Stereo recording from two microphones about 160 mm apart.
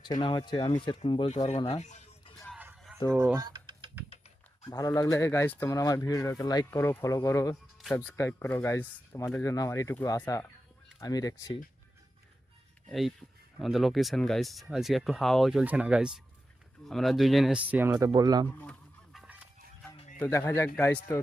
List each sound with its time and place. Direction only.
0.0 s speech: 30° left (ahead or behind)
1.5 s speech: 45° left (ahead or behind)
2.2 s music: 25° left (ahead or behind)
3.0 s speech: 25° left (ahead or behind)
3.3 s a sound: 25° right (ahead or behind)
4.6 s speech: 25° left (ahead or behind)
6.7 s speech: 15° left (ahead or behind)
12.9 s speech: centre (ahead or behind); by 18.4 s 25° right (ahead or behind)
18.4 s fowl: 10° left (ahead or behind)
19.2 s fowl: 10° right (ahead or behind)
20.1 s speech: 15° left (ahead or behind)